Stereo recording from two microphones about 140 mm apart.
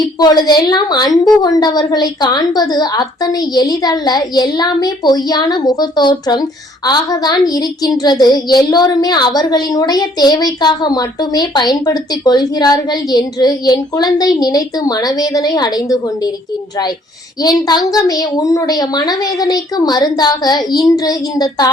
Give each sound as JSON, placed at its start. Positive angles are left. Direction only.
{"t": 0.0, "sound": "a woman's voice", "side_deg": 30}
{"t": 17.7, "sound": "a woman's voice", "side_deg": 30}